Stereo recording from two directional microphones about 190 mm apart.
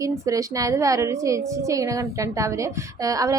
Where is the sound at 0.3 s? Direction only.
15° right (ahead or behind).